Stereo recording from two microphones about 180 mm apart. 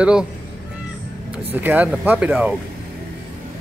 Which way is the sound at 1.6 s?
10° right (ahead or behind).